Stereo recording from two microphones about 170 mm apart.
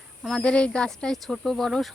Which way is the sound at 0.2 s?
5° left (ahead or behind).